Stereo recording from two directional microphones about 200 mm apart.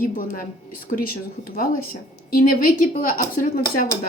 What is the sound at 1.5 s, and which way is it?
A woman's voice, 45° left (ahead or behind).